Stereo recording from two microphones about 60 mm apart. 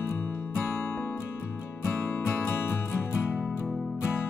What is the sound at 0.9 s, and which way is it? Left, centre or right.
Music, left.